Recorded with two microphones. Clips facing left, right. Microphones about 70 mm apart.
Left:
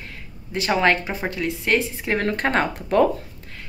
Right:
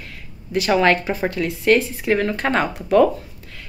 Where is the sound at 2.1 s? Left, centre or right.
Left.